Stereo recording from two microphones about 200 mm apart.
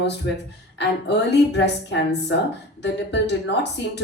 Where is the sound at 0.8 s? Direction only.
60° left (ahead or behind).